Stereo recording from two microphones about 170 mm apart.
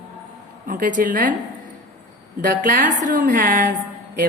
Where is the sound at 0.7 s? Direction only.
50° right (ahead or behind).